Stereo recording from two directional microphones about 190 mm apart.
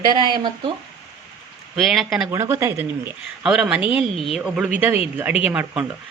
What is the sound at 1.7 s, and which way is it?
Speech, centre (ahead or behind).